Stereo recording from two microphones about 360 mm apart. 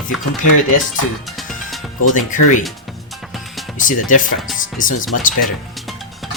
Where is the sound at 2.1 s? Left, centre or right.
Left.